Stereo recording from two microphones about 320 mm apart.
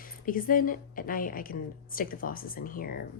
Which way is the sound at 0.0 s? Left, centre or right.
Left.